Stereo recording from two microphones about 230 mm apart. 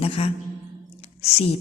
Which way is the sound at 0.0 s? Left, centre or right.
Left.